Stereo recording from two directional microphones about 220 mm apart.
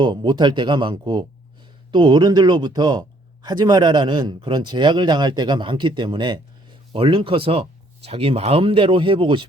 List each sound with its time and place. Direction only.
0.0 s speech: 20° right (ahead or behind)